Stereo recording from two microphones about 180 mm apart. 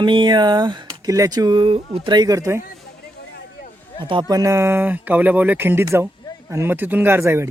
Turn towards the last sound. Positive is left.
turn(degrees=-15)  # may be behind; listen again after turning